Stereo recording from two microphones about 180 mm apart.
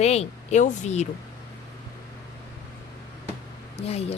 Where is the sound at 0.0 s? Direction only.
35° left (ahead or behind).